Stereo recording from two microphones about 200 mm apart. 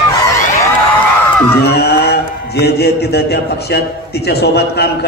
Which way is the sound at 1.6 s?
55° left (ahead or behind).